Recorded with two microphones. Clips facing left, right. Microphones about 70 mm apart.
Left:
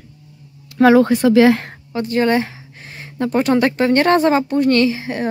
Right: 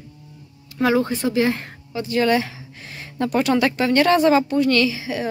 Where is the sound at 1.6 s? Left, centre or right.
Left.